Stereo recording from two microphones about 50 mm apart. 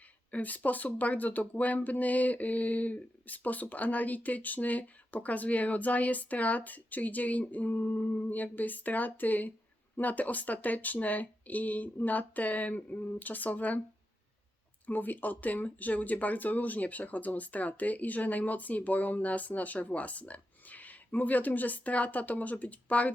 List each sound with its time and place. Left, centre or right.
0.3 s speech: left
14.8 s speech: left